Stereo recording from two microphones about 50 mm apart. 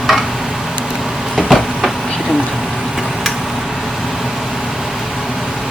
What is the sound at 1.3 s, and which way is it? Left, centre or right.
Vehicle, centre.